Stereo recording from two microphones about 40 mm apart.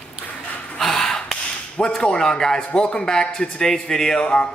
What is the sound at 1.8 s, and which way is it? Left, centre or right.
A man's voice, centre.